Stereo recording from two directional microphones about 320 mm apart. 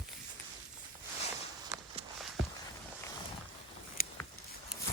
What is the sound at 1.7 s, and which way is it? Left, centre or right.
Walk, centre.